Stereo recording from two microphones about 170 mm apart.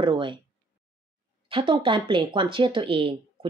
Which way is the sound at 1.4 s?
30° right (ahead or behind).